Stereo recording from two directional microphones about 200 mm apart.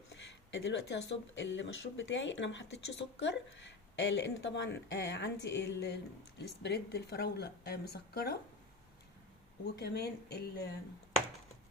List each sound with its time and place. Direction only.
0.1 s speech: 65° left (ahead or behind)
9.7 s speech: 55° left (ahead or behind)